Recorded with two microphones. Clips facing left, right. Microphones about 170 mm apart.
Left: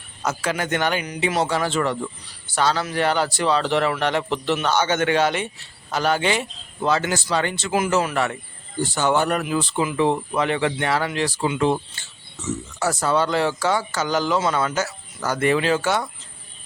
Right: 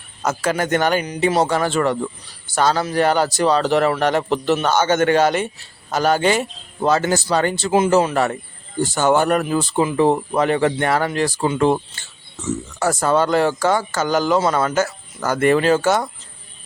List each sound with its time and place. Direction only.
0.2 s speech: 45° right (ahead or behind)